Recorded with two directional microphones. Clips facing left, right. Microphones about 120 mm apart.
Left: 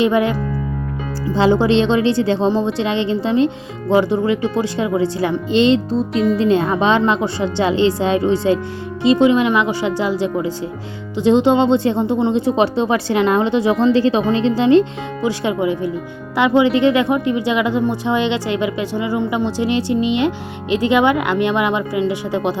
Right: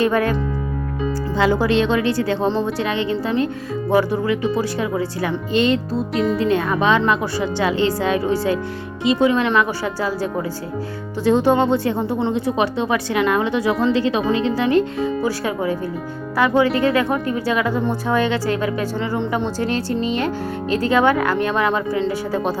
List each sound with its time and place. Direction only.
0.0 s speech: 20° left (ahead or behind)
1.4 s speech: 25° left (ahead or behind)